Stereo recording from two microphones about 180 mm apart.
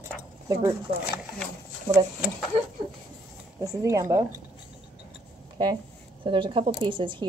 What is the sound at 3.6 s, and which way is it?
Speech, 20° right (ahead or behind).